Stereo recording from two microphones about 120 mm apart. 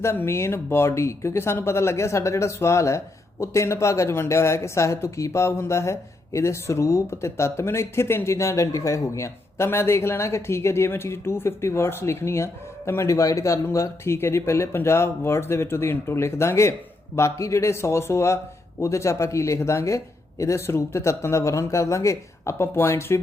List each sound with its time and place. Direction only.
0.0 s speech: 20° left (ahead or behind)